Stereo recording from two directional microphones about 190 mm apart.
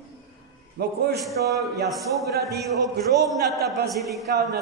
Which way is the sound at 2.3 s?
55° right (ahead or behind).